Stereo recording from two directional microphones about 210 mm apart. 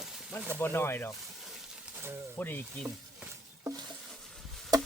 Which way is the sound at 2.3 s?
10° left (ahead or behind).